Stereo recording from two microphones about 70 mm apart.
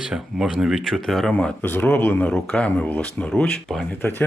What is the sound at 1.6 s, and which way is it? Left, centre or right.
Speech, left.